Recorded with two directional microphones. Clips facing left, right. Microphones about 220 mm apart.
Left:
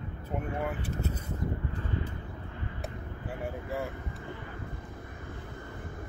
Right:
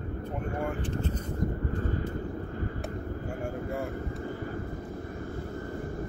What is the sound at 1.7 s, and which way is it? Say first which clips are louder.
Vehicle: right 5 dB; 45° right (ahead or behind).